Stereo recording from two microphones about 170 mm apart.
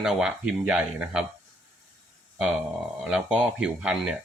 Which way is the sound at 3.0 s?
5° right (ahead or behind).